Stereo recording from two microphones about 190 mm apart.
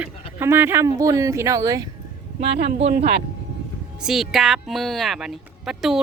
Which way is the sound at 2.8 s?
35° right (ahead or behind).